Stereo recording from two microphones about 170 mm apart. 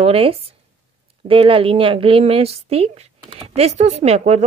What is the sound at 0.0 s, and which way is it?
A woman's voice, 35° right (ahead or behind).